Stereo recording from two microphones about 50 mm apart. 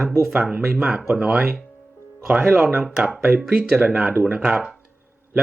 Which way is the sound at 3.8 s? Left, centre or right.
Right.